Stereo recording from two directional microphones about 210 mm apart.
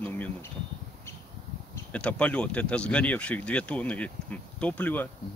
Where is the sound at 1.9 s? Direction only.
5° left (ahead or behind).